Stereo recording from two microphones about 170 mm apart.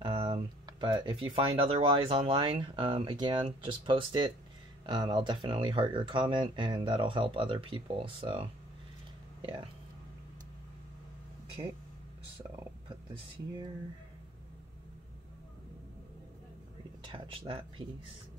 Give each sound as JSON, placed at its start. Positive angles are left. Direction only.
{"t": 0.0, "sound": "speech", "side_deg": -30}
{"t": 11.6, "sound": "speech", "side_deg": -35}
{"t": 17.0, "sound": "speech", "side_deg": -30}